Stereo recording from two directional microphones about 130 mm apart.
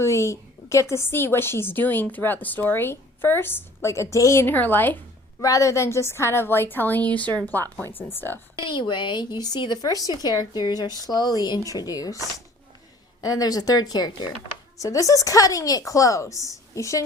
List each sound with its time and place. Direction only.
0.0 s a woman's voice: 20° left (ahead or behind)
5.4 s a woman's voice: 25° left (ahead or behind)
8.6 s a woman's voice: 35° left (ahead or behind)
13.2 s a woman's voice: 30° left (ahead or behind)